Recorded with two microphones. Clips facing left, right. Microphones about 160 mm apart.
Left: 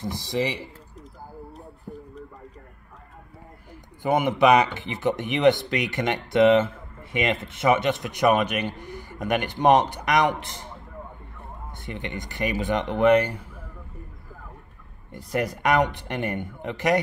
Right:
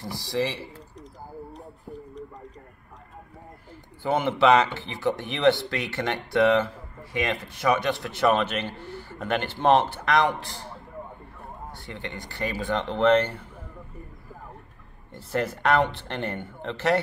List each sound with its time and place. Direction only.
0.0 s speech: 20° left (ahead or behind)
4.0 s speech: 15° left (ahead or behind)
11.8 s speech: 20° left (ahead or behind)
15.1 s speech: 15° left (ahead or behind)